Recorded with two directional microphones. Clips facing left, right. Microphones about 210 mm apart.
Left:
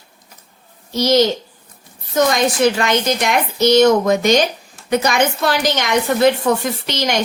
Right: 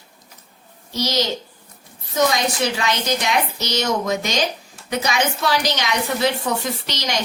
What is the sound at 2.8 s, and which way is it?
A woman's voice, 50° left (ahead or behind).